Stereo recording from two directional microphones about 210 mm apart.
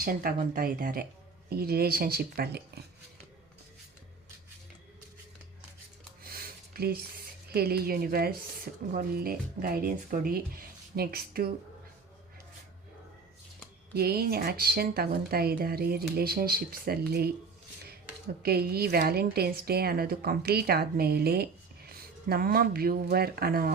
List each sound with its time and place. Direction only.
0.0 s a woman's voice: 45° right (ahead or behind)
6.2 s a sound: 45° right (ahead or behind)
7.5 s a woman's voice: 50° right (ahead or behind)
13.9 s a woman's voice: 45° right (ahead or behind)
18.4 s a woman's voice: 45° right (ahead or behind)